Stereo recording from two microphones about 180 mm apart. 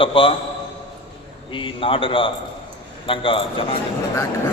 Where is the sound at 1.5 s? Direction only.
30° left (ahead or behind).